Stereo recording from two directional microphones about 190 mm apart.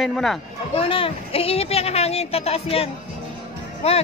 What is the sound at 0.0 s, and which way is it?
Speech, centre (ahead or behind).